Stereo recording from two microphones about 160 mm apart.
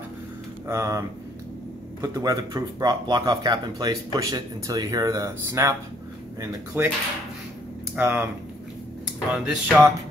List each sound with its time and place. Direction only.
0.7 s speech: 20° right (ahead or behind)
7.9 s speech: 10° right (ahead or behind)
9.3 s speech: 5° right (ahead or behind)